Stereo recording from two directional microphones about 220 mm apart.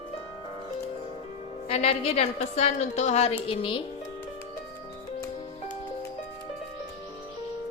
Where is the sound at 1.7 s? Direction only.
30° left (ahead or behind).